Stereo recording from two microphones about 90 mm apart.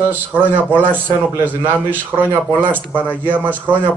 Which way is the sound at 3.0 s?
15° left (ahead or behind).